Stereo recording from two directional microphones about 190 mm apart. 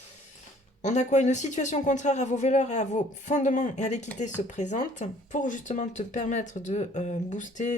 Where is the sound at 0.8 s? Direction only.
40° left (ahead or behind).